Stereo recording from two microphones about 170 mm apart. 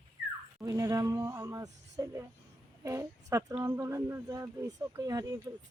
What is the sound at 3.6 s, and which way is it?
Speech, 15° right (ahead or behind).